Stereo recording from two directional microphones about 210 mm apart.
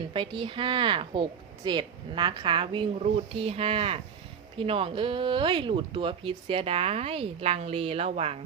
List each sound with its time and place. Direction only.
0.1 s speech: 25° right (ahead or behind)